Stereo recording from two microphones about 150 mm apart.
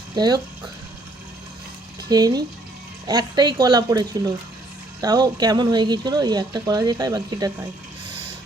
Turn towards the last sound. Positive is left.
turn(degrees=-25)  # may be behind; listen again after turning